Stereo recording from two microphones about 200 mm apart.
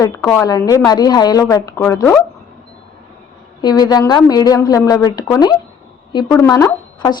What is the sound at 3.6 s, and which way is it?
A woman's voice, 20° left (ahead or behind).